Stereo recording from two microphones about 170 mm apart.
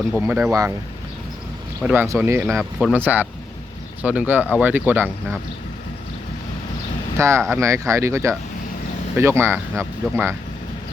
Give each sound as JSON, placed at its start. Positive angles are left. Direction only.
{"t": 0.2, "sound": "speech", "side_deg": -10}
{"t": 1.8, "sound": "speech", "side_deg": -10}
{"t": 2.6, "sound": "speech", "side_deg": 5}
{"t": 2.9, "sound": "speech", "side_deg": -10}
{"t": 7.2, "sound": "speech", "side_deg": -15}